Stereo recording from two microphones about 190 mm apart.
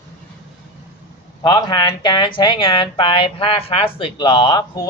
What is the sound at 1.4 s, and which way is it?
Speech, 20° left (ahead or behind).